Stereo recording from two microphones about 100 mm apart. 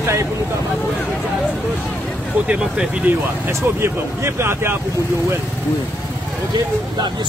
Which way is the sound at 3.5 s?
25° right (ahead or behind).